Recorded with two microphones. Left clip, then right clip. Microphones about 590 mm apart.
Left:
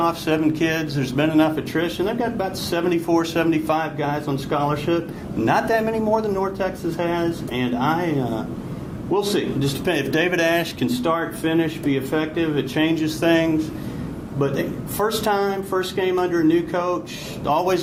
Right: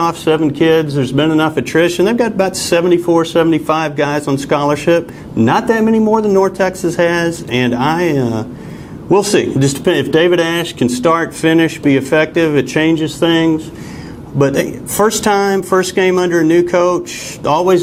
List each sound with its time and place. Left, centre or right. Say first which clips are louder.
0.0 s speech: right 7 dB; right
9.8 s speech: right 9 dB; right
14.3 s speech: right 10 dB; right